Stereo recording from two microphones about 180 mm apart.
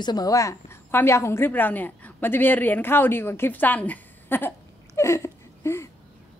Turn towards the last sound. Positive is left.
turn(degrees=15)  # may be behind; listen again after turning